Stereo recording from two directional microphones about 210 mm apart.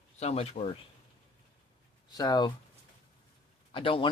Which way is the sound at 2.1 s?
20° left (ahead or behind).